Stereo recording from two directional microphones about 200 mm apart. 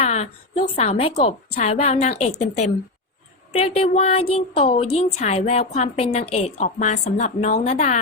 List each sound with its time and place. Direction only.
0.0 s a woman's voice: 30° left (ahead or behind)
3.5 s a woman's voice: 30° left (ahead or behind)